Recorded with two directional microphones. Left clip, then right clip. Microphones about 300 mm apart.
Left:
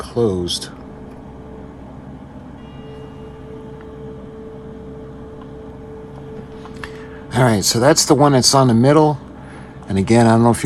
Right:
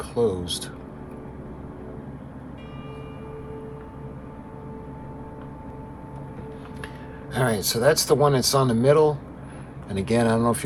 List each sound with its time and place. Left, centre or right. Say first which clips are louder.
0.1 s speech: left 5 dB; left
7.3 s speech: left 8 dB; left